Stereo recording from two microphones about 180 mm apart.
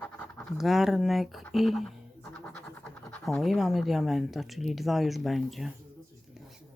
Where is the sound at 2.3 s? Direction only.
5° left (ahead or behind).